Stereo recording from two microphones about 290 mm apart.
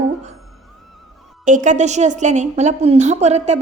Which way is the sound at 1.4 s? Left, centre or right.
Right.